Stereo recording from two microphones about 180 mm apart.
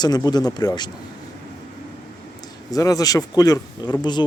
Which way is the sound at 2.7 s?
20° left (ahead or behind).